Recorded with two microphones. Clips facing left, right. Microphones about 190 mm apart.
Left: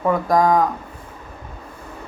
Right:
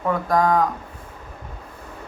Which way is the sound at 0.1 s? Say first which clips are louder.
Left 2 dB; 10° left (ahead or behind).